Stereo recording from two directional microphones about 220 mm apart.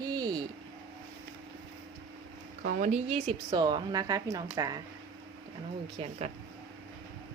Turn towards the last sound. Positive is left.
turn(degrees=-30)  # may be behind; listen again after turning